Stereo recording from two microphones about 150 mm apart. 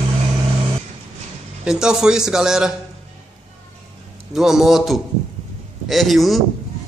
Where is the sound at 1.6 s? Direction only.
5° right (ahead or behind).